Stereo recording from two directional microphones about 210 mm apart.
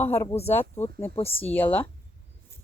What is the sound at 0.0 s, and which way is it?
Speech, 15° left (ahead or behind).